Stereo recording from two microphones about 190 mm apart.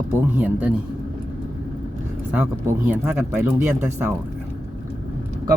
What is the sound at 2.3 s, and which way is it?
Speech, 10° right (ahead or behind).